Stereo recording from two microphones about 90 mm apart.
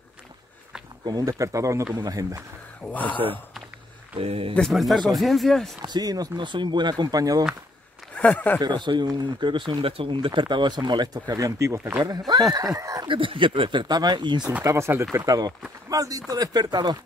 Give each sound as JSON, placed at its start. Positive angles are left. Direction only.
{"t": 1.0, "sound": "speech", "side_deg": -45}
{"t": 2.8, "sound": "speech", "side_deg": 15}
{"t": 4.2, "sound": "speech", "side_deg": -90}
{"t": 4.6, "sound": "speech", "side_deg": 5}
{"t": 5.8, "sound": "speech", "side_deg": -50}
{"t": 6.4, "sound": "speech", "side_deg": -60}
{"t": 8.2, "sound": "speech", "side_deg": 15}
{"t": 8.5, "sound": "speech", "side_deg": -55}
{"t": 12.0, "sound": "speech", "side_deg": -45}
{"t": 13.1, "sound": "speech", "side_deg": -75}
{"t": 14.6, "sound": "speech", "side_deg": -35}
{"t": 15.1, "sound": "speech", "side_deg": -45}